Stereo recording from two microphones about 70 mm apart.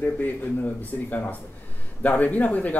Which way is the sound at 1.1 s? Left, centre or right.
Left.